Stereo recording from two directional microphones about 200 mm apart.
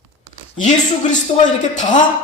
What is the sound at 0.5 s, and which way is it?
Speech, 40° left (ahead or behind).